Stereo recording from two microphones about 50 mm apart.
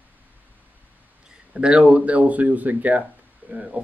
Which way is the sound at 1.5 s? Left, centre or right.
Right.